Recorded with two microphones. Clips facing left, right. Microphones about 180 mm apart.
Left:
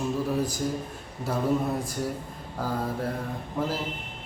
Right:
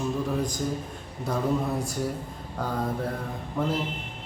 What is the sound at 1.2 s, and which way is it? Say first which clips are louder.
Speech: left 1 dB; 5° left (ahead or behind).